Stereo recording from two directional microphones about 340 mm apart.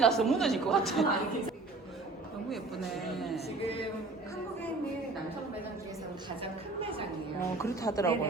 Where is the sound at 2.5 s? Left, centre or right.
Centre.